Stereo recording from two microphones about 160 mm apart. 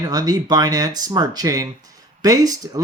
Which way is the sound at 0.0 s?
25° right (ahead or behind).